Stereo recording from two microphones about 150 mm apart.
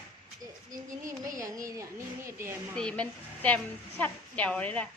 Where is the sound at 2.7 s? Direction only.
5° left (ahead or behind).